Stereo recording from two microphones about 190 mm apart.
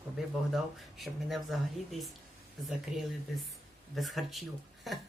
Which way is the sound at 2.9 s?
5° right (ahead or behind).